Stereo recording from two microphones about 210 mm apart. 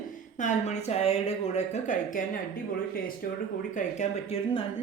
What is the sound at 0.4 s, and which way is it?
Speech, 30° left (ahead or behind).